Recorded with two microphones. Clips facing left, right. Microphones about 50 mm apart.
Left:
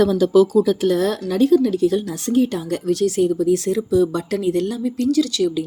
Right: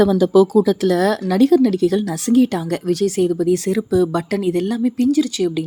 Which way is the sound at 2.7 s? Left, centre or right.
Right.